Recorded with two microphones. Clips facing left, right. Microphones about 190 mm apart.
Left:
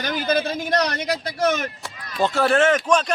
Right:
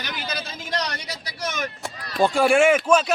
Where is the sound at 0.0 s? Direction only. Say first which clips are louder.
Left 10 dB; 50° left (ahead or behind).